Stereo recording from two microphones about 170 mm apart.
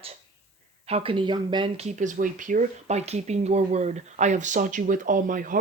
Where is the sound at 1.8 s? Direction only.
45° right (ahead or behind).